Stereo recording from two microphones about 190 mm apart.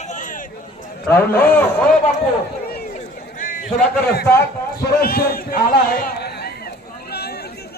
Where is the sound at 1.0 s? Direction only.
10° left (ahead or behind).